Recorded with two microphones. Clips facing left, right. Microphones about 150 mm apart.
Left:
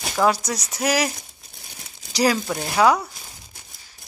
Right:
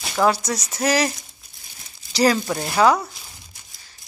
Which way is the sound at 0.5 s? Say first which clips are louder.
Right 2 dB; 10° left (ahead or behind).